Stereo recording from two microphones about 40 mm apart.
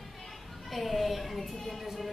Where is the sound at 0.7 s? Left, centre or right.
Centre.